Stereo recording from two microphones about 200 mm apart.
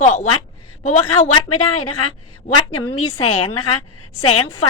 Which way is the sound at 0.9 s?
90° left.